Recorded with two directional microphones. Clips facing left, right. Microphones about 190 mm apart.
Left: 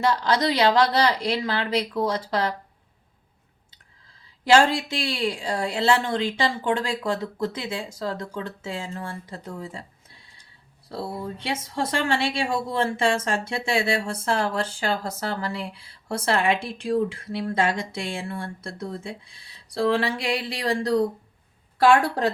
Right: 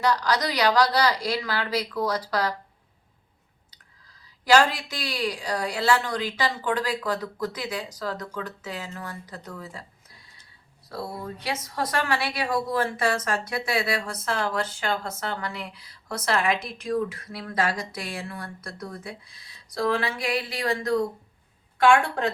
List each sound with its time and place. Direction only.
0.0 s a woman's voice: 25° left (ahead or behind)
4.4 s a woman's voice: 25° left (ahead or behind)